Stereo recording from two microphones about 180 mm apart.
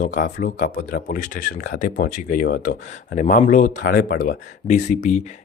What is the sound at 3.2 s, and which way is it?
A man's voice, 45° left (ahead or behind).